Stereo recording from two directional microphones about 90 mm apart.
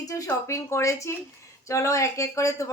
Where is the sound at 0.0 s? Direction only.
40° left (ahead or behind).